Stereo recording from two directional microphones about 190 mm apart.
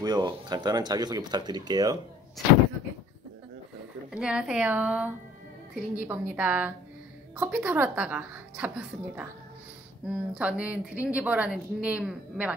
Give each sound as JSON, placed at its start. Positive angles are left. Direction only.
{"t": 0.0, "sound": "speech", "side_deg": -20}
{"t": 4.1, "sound": "speech", "side_deg": -5}